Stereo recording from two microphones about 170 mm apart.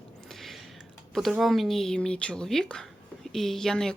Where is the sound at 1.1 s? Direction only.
Centre (ahead or behind).